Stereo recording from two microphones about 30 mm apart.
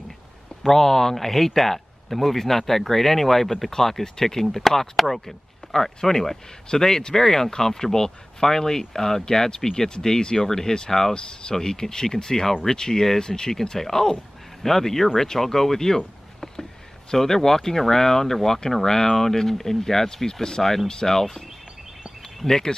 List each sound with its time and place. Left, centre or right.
0.7 s speech: centre
11.1 s speech: left
17.1 s speech: centre
22.4 s speech: centre